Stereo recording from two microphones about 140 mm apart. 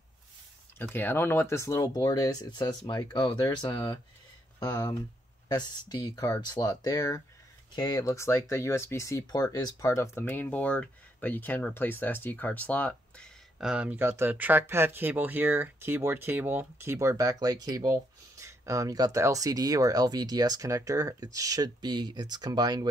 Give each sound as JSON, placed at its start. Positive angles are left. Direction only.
{"t": 0.7, "sound": "speech", "side_deg": 15}
{"t": 13.6, "sound": "speech", "side_deg": -5}